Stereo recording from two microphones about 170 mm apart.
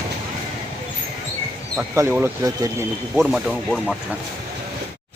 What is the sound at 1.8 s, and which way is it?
Speech, 15° right (ahead or behind).